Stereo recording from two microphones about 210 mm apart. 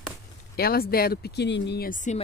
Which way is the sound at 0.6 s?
45° left (ahead or behind).